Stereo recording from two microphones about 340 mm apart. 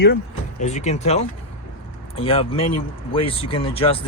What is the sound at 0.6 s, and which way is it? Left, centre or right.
Speech, centre.